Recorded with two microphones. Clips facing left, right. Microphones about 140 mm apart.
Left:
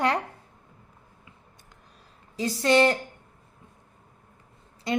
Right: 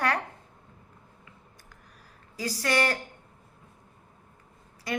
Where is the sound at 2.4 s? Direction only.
25° left (ahead or behind).